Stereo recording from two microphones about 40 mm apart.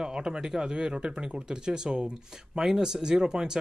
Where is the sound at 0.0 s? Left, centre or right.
Centre.